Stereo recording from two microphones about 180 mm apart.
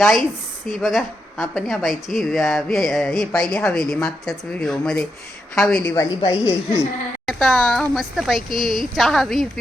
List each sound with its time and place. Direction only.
0.0 s a woman's voice: 5° left (ahead or behind); by 6.5 s 20° left (ahead or behind)
7.3 s speech: 5° left (ahead or behind)